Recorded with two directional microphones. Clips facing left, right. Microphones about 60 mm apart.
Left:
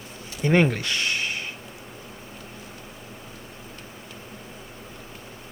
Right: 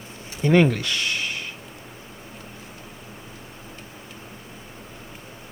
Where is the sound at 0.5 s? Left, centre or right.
Left.